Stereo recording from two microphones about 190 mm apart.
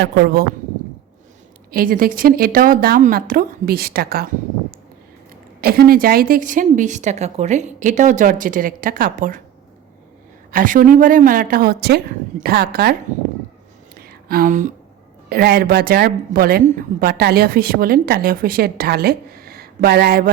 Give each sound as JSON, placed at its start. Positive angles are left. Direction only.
{"t": 0.0, "sound": "a man's voice", "side_deg": -55}
{"t": 1.7, "sound": "a woman's voice", "side_deg": -50}
{"t": 5.5, "sound": "a woman's voice", "side_deg": -55}
{"t": 10.5, "sound": "a woman's voice", "side_deg": -45}
{"t": 13.9, "sound": "a sound", "side_deg": -50}
{"t": 15.3, "sound": "a woman's voice", "side_deg": -55}